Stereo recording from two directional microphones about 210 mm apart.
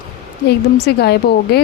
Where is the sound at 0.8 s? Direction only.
50° left (ahead or behind).